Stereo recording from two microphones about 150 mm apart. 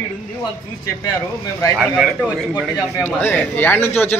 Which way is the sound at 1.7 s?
5° right (ahead or behind).